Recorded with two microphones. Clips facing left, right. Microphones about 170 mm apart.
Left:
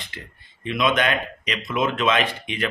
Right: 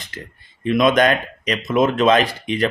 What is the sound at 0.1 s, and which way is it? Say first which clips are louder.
Speech: right 5 dB; 45° right (ahead or behind).